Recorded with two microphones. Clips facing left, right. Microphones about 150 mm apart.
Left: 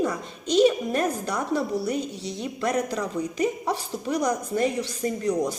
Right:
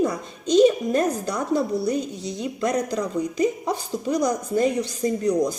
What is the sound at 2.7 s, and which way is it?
A child's voice, 35° right (ahead or behind).